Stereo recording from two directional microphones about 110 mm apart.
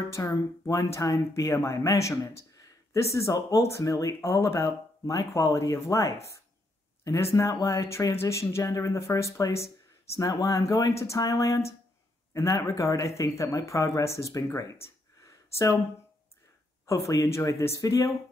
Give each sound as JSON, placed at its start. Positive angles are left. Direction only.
{"t": 0.1, "sound": "speech", "side_deg": 30}
{"t": 16.8, "sound": "speech", "side_deg": 25}